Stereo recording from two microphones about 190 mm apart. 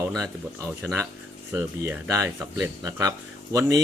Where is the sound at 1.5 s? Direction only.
10° right (ahead or behind).